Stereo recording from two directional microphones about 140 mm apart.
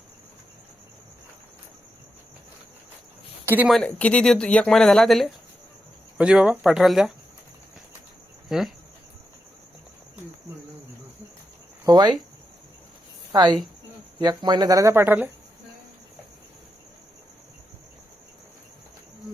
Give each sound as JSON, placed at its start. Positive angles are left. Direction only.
{"t": 3.4, "sound": "speech", "side_deg": -15}
{"t": 3.7, "sound": "speech", "side_deg": 5}
{"t": 8.4, "sound": "cricket", "side_deg": 0}
{"t": 11.9, "sound": "speech", "side_deg": -30}
{"t": 13.3, "sound": "speech", "side_deg": -30}